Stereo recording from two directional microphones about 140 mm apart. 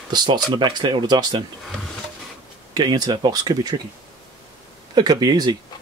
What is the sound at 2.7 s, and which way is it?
Speech, 30° right (ahead or behind).